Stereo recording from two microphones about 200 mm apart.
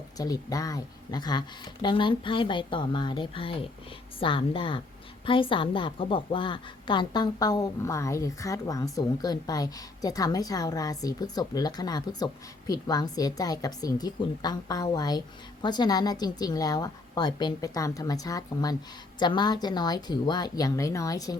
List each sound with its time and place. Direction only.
0.2 s a woman's voice: 20° left (ahead or behind)